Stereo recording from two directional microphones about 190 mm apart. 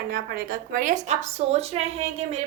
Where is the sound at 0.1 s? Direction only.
50° right (ahead or behind).